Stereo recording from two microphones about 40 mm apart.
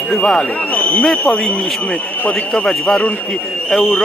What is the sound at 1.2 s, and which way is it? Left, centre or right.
Speech, left.